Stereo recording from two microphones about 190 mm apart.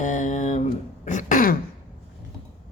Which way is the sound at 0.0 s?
40° left (ahead or behind).